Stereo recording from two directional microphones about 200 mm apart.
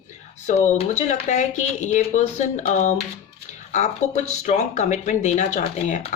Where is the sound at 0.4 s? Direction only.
35° left (ahead or behind).